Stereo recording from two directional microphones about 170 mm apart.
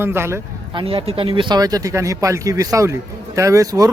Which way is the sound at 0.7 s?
30° right (ahead or behind).